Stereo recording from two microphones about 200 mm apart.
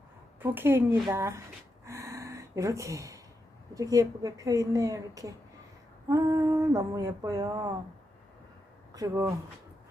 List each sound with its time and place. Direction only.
0.3 s a woman's voice: 10° right (ahead or behind)
1.8 s gasp: 15° right (ahead or behind)
3.8 s speech: 15° right (ahead or behind)
8.9 s speech: 15° right (ahead or behind)